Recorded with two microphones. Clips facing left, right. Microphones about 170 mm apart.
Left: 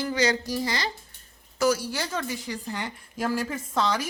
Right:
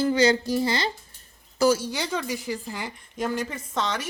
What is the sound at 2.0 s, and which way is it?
A woman's voice, 10° right (ahead or behind).